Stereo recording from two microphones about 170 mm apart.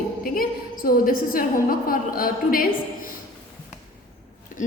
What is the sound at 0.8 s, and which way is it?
A woman's voice, 55° left (ahead or behind).